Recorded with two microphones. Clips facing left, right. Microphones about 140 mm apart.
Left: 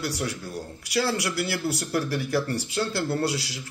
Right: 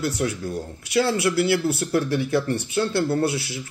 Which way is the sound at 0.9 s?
20° right (ahead or behind).